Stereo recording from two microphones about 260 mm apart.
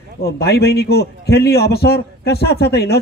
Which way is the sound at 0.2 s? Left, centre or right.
Left.